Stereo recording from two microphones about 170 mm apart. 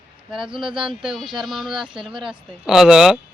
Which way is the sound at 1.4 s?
Centre (ahead or behind).